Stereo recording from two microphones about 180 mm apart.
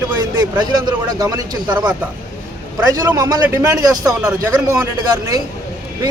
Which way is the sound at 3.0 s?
20° right (ahead or behind).